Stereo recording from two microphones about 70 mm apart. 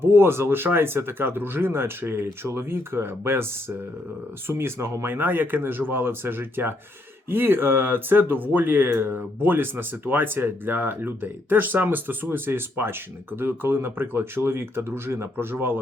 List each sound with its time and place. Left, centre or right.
0.0 s speech: right